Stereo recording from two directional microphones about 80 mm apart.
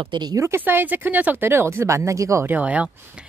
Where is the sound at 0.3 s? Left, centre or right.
Right.